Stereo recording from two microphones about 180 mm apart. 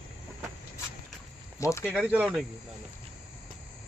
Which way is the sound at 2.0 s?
10° right (ahead or behind).